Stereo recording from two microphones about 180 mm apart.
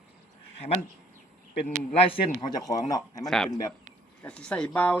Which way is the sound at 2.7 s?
30° left (ahead or behind).